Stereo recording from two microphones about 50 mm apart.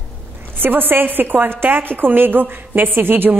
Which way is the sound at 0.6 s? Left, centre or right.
Right.